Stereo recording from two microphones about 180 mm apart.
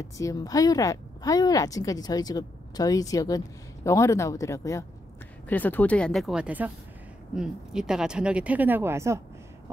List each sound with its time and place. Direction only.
0.0 s a woman's voice: 20° left (ahead or behind); by 9.2 s 15° right (ahead or behind)